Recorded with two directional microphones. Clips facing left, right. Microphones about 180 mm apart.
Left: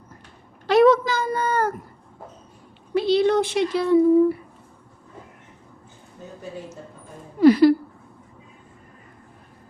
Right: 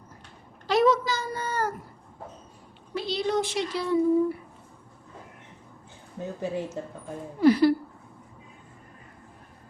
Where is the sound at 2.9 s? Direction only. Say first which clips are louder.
Left 8 dB; 65° left (ahead or behind).